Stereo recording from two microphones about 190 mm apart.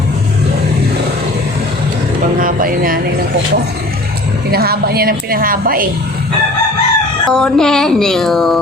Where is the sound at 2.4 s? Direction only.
50° right (ahead or behind).